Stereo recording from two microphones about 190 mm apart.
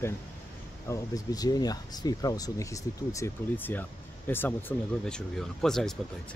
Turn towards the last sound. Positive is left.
turn(degrees=0)  # may be behind; listen again after turning